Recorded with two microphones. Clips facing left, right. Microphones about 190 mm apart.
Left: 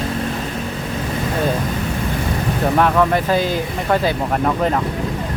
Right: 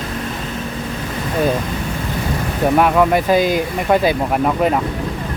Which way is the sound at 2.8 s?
10° right (ahead or behind).